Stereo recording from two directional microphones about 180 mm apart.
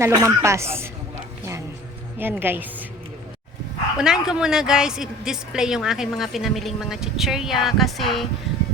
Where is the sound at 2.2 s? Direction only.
10° right (ahead or behind).